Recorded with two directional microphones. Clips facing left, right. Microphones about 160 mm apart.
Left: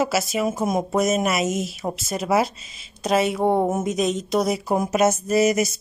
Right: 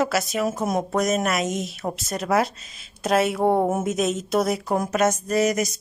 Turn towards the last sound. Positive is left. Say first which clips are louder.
# left 2 dB
turn(degrees=5)  # may be behind; listen again after turning